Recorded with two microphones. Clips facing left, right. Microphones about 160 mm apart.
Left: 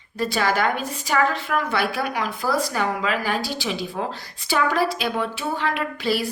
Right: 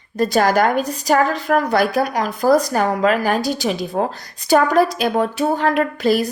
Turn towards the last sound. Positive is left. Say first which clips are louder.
# right 7 dB
turn(degrees=-45)  # may be behind; listen again after turning